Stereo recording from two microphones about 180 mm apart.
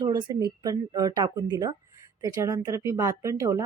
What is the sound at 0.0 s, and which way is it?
Speech, 25° right (ahead or behind).